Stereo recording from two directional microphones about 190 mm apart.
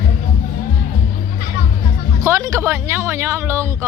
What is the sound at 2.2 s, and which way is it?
Speech, 15° right (ahead or behind).